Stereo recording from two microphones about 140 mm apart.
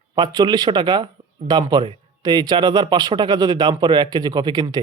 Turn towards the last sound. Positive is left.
turn(degrees=-30)  # may be behind; listen again after turning